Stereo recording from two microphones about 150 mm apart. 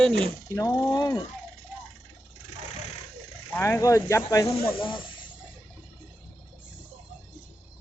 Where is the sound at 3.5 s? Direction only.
20° left (ahead or behind).